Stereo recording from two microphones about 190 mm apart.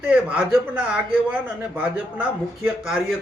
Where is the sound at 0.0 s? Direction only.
5° right (ahead or behind).